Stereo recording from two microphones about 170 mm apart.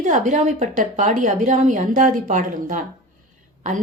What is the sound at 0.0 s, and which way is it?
A woman's voice, 45° right (ahead or behind).